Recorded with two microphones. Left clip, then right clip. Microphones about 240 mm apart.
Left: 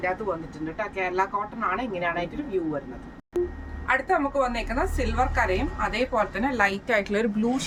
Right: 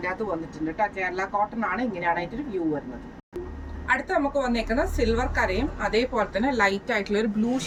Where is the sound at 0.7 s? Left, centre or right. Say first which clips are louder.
Left 1 dB; centre.